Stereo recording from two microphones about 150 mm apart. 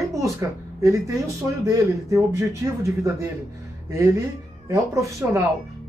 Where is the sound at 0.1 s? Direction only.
20° right (ahead or behind).